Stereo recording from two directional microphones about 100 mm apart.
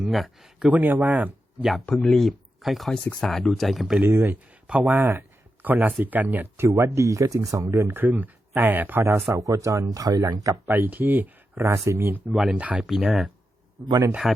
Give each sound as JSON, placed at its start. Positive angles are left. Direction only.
{"t": 0.1, "sound": "speech", "side_deg": 0}
{"t": 0.7, "sound": "speech", "side_deg": -20}
{"t": 2.0, "sound": "speech", "side_deg": 0}
{"t": 4.0, "sound": "speech", "side_deg": -25}
{"t": 4.6, "sound": "speech", "side_deg": -15}
{"t": 10.7, "sound": "speech", "side_deg": -20}
{"t": 12.3, "sound": "speech", "side_deg": -5}
{"t": 12.9, "sound": "speech", "side_deg": 0}